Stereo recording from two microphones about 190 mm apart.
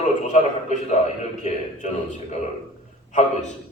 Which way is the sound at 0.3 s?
40° left (ahead or behind).